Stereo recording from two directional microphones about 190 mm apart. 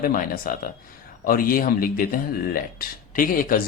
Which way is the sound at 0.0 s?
50° left (ahead or behind).